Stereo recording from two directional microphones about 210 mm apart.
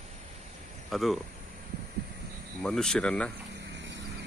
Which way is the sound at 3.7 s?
60° right (ahead or behind).